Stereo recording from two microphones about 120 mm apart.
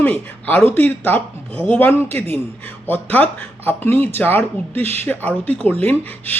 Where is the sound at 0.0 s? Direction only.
15° left (ahead or behind).